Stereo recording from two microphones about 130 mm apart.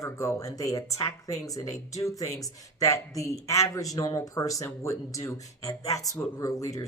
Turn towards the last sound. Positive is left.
turn(degrees=25)  # may be behind; listen again after turning